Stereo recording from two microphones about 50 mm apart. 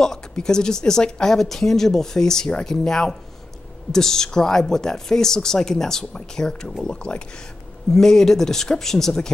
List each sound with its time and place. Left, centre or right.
0.0 s speech: centre